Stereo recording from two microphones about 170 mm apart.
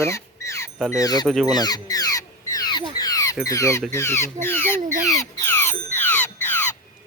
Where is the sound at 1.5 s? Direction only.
25° left (ahead or behind).